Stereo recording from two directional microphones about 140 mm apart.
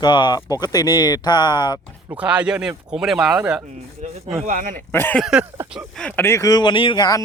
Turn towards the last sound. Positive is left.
turn(degrees=25)  # may be behind; listen again after turning